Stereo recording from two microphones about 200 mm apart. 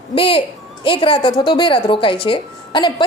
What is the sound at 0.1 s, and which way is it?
A woman's voice, 25° left (ahead or behind).